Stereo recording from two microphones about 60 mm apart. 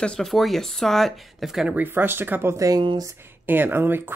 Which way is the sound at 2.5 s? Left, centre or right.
Right.